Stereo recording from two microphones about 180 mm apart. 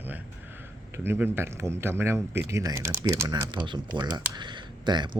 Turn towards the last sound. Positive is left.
turn(degrees=-25)  # may be behind; listen again after turning